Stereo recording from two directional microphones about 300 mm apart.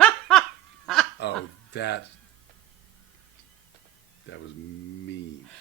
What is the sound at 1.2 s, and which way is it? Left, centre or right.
Speech, left.